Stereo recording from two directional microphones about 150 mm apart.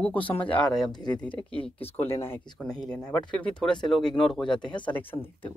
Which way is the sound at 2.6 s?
5° left (ahead or behind).